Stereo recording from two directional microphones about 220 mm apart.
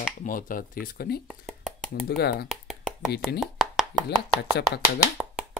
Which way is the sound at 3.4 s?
Centre (ahead or behind).